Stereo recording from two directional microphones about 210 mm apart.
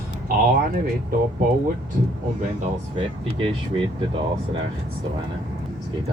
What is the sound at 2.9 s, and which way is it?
Speech, 25° right (ahead or behind).